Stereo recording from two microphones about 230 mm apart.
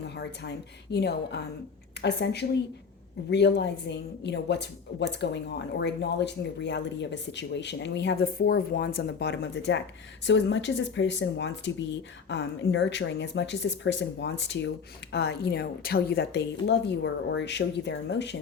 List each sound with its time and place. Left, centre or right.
0.2 s speech: left